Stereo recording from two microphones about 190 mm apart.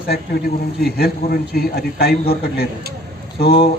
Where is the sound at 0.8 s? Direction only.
55° left (ahead or behind).